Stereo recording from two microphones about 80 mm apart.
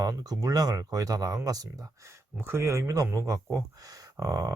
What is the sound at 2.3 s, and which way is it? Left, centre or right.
Speech, right.